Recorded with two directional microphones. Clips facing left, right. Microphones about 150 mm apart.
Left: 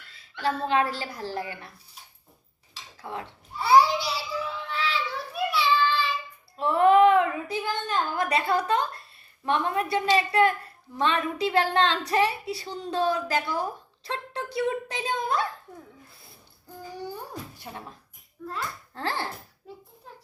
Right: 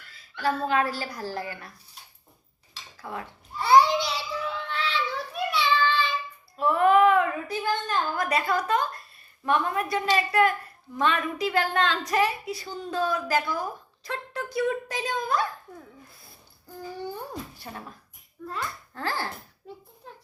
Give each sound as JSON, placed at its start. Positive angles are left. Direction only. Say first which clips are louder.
{"t": 0.3, "sound": "speech", "louder": "even", "side_deg": 30}
{"t": 3.0, "sound": "speech", "louder": "even", "side_deg": 30}
{"t": 3.6, "sound": "a sound", "louder": "right 1 dB", "side_deg": 5}
{"t": 5.3, "sound": "child singing", "louder": "left 2 dB", "side_deg": 5}
{"t": 6.6, "sound": "a woman's voice", "louder": "left 1 dB", "side_deg": 30}
{"t": 17.6, "sound": "speech", "louder": "even", "side_deg": 20}
{"t": 18.9, "sound": "speech", "louder": "even", "side_deg": 25}